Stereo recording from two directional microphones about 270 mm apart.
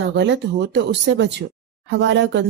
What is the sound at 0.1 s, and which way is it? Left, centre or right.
Speech, right.